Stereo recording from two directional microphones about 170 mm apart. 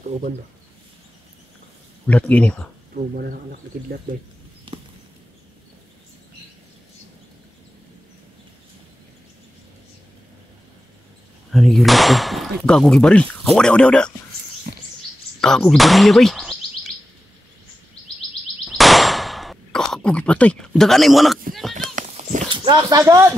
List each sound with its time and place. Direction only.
2.0 s speech: 10° left (ahead or behind)
2.9 s speech: 55° right (ahead or behind)
11.5 s speech: centre (ahead or behind)
14.7 s patter: 55° right (ahead or behind)
15.4 s speech: 5° left (ahead or behind)
18.7 s a sound: centre (ahead or behind)
21.7 s horse: 50° right (ahead or behind)
22.5 s speech: 25° right (ahead or behind)